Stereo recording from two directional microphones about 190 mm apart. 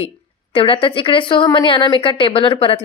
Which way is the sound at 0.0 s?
30° left (ahead or behind).